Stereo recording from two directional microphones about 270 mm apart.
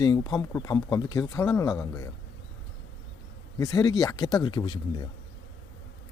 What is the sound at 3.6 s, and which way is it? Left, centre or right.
Speech, centre.